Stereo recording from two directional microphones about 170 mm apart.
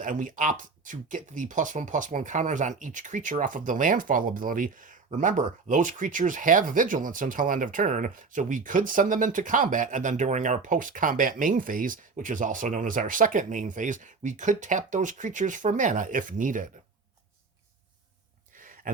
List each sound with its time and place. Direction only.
0.0 s speech: 50° right (ahead or behind)